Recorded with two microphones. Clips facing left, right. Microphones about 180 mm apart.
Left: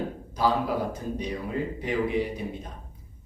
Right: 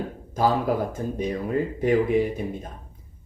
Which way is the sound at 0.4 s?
50° right (ahead or behind).